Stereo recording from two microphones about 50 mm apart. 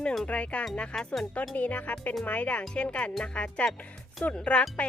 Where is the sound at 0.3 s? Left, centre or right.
Left.